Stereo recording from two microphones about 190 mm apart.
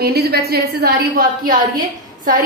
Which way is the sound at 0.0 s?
55° right (ahead or behind).